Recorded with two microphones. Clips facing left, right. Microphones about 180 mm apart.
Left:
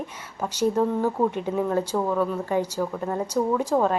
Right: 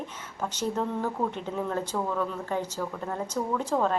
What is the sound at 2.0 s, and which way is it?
Speech, 20° left (ahead or behind).